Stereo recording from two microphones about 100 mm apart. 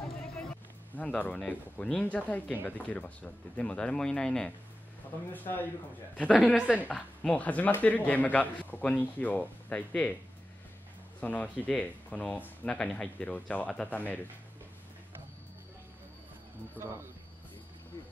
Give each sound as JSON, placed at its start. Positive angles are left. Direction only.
{"t": 0.9, "sound": "speech", "side_deg": 15}
{"t": 5.3, "sound": "speech", "side_deg": 20}
{"t": 11.1, "sound": "speech", "side_deg": 15}
{"t": 16.7, "sound": "speech", "side_deg": -25}